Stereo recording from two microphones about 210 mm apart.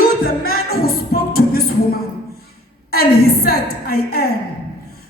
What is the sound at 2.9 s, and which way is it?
A woman's voice, 45° left (ahead or behind).